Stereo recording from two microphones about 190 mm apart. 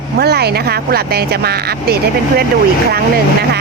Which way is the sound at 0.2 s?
55° right (ahead or behind).